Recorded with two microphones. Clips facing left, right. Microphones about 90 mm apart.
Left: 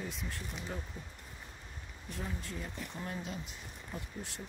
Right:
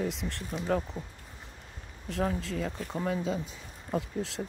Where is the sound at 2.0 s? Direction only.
90° right.